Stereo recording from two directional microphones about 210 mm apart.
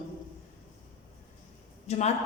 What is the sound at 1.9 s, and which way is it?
Speech, 30° left (ahead or behind).